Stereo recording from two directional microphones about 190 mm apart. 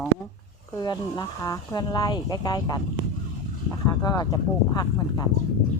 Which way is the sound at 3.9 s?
20° left (ahead or behind).